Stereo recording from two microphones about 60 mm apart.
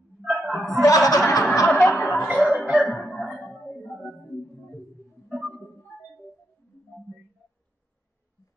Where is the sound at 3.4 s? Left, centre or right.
Centre.